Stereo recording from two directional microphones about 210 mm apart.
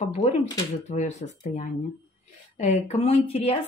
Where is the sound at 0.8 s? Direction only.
35° left (ahead or behind).